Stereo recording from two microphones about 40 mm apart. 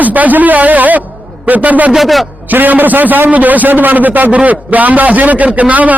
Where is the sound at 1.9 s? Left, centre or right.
Centre.